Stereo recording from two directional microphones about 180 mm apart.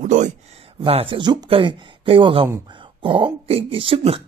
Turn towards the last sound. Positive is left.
turn(degrees=-30)  # may be behind; listen again after turning